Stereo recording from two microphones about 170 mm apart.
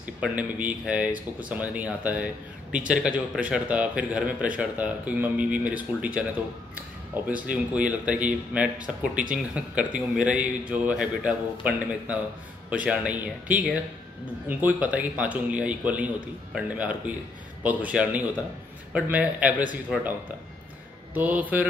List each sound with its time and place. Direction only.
0.0 s speech: 10° right (ahead or behind)
7.2 s speech: 10° right (ahead or behind)